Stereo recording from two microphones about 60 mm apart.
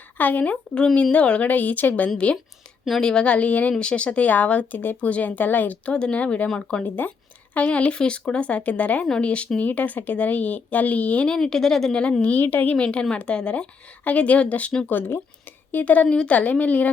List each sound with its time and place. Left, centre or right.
0.2 s a woman's voice: left
2.1 s a woman's voice: centre
11.3 s speech: centre
12.2 s a woman's voice: left
12.7 s a woman's voice: centre
14.8 s a woman's voice: left